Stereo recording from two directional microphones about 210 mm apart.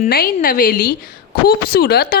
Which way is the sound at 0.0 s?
45° left (ahead or behind).